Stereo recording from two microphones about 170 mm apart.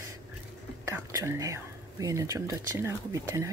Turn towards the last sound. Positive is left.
turn(degrees=-15)  # may be behind; listen again after turning